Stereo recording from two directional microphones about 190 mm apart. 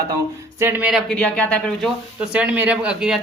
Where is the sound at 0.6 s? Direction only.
10° right (ahead or behind).